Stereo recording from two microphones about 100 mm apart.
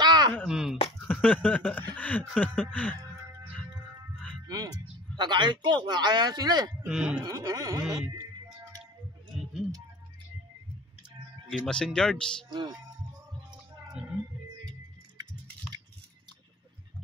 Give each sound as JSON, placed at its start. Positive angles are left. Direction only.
{"t": 0.0, "sound": "chopping", "side_deg": -45}
{"t": 0.5, "sound": "a sound", "side_deg": -5}
{"t": 1.0, "sound": "a sound", "side_deg": 15}
{"t": 2.0, "sound": "music", "side_deg": 15}
{"t": 4.5, "sound": "speech", "side_deg": -40}
{"t": 6.9, "sound": "speech", "side_deg": -5}
{"t": 7.2, "sound": "speech", "side_deg": -35}
{"t": 9.3, "sound": "music", "side_deg": -5}
{"t": 11.6, "sound": "speech", "side_deg": 5}
{"t": 12.4, "sound": "speech", "side_deg": -50}